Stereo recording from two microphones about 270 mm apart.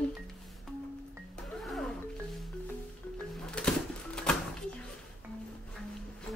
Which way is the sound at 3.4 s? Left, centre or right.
Centre.